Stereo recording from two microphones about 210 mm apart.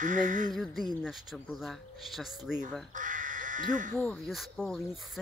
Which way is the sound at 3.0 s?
40° right (ahead or behind).